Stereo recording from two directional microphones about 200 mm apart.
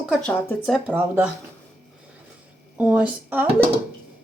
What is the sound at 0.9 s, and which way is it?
Speech, 10° right (ahead or behind).